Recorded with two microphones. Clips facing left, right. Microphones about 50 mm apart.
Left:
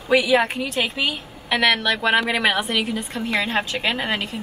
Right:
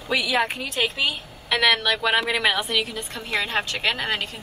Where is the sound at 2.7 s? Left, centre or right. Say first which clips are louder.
Left 2 dB; left.